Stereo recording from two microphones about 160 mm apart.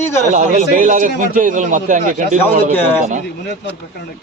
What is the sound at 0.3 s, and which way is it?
Speech, 50° right (ahead or behind).